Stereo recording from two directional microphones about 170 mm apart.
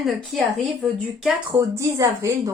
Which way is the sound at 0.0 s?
Centre (ahead or behind).